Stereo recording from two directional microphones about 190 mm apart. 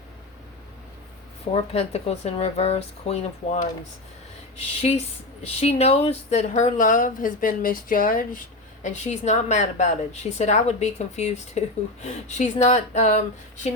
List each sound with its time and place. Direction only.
1.5 s a woman's voice: 35° left (ahead or behind)
4.8 s a woman's voice: 35° left (ahead or behind)